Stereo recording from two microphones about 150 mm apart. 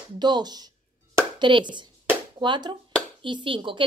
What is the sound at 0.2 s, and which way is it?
Speech, 30° right (ahead or behind).